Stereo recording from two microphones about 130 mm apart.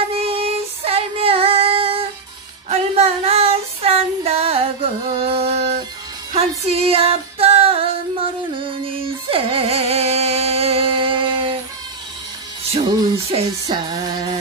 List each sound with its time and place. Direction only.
0.1 s female singing: 50° right (ahead or behind)
5.1 s music: 45° right (ahead or behind)
13.3 s music: 45° right (ahead or behind)